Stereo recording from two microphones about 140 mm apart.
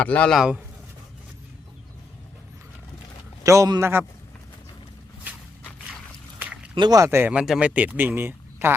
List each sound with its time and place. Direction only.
0.0 s speech: 10° left (ahead or behind)
0.3 s speech: 5° right (ahead or behind)
3.4 s a man's voice: 20° right (ahead or behind)
6.4 s a sound: 10° right (ahead or behind)
6.7 s speech: 30° right (ahead or behind)